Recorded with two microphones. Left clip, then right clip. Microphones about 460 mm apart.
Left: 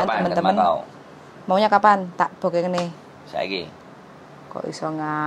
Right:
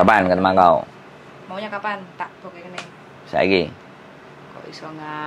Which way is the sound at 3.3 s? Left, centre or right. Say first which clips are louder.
Right 9 dB; right.